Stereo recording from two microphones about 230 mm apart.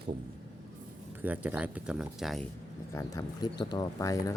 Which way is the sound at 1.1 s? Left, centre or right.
Centre.